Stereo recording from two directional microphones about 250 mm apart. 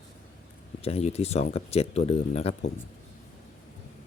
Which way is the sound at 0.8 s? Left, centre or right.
Left.